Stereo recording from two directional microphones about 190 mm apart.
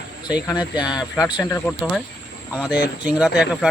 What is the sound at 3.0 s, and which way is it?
Speech, 5° right (ahead or behind).